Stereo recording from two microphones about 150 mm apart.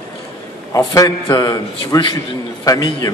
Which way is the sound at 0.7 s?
25° left (ahead or behind).